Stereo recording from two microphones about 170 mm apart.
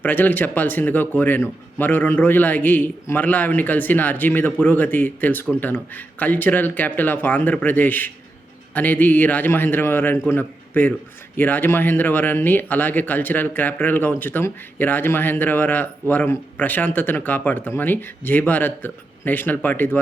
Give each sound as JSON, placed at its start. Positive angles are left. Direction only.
{"t": 0.0, "sound": "a man's voice", "side_deg": 10}